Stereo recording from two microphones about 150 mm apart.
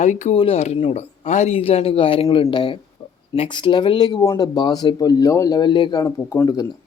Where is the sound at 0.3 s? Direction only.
40° left (ahead or behind).